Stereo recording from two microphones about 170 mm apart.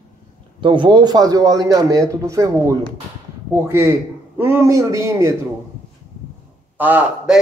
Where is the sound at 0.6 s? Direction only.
30° right (ahead or behind).